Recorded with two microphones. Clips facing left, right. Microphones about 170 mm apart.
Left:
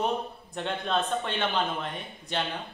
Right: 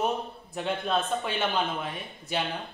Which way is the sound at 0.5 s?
Centre (ahead or behind).